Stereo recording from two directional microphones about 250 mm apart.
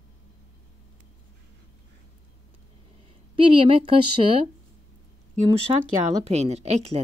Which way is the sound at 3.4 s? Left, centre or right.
Right.